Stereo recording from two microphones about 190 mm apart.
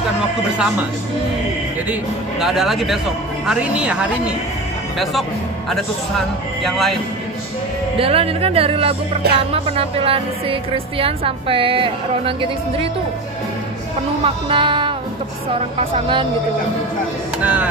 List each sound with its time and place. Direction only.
2.4 s speech: centre (ahead or behind)
6.6 s speech: centre (ahead or behind)
8.0 s speech: 30° right (ahead or behind)
14.2 s speech: 25° right (ahead or behind)
17.4 s speech: 10° right (ahead or behind)